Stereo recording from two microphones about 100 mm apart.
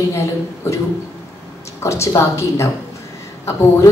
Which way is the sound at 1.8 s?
30° left (ahead or behind).